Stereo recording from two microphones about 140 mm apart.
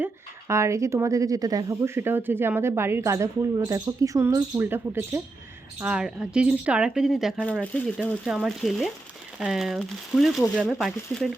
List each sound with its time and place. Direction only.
0.0 s speech: 20° right (ahead or behind); by 7.4 s 5° right (ahead or behind)
7.6 s speech: 10° left (ahead or behind)